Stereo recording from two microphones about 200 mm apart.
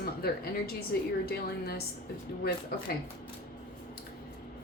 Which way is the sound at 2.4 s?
50° left (ahead or behind).